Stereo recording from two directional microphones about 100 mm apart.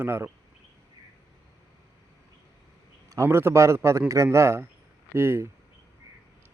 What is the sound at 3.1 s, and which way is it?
Speech, 30° right (ahead or behind).